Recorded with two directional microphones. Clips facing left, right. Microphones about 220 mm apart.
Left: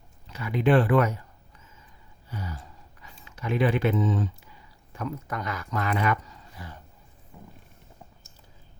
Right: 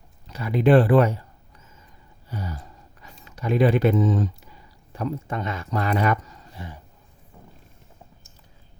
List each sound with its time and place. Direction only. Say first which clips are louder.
0.3 s speech: right 5 dB; 35° right (ahead or behind)
2.3 s gasp: right 4 dB; 40° right (ahead or behind)
3.2 s speech: right 5 dB; 35° right (ahead or behind)
6.6 s speech: right 5 dB; 25° right (ahead or behind)